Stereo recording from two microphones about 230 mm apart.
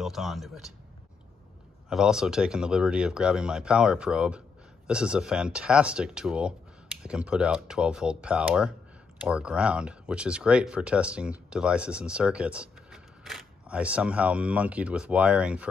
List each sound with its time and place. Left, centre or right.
0.0 s speech: centre
1.9 s speech: centre